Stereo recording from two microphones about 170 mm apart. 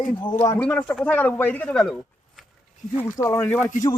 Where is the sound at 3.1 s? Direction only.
15° left (ahead or behind).